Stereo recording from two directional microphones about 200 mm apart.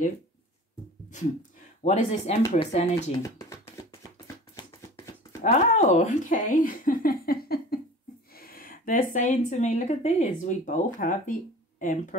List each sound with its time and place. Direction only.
1.9 s speech: 30° left (ahead or behind)
3.2 s speech: 15° left (ahead or behind)
5.4 s speech: 35° left (ahead or behind)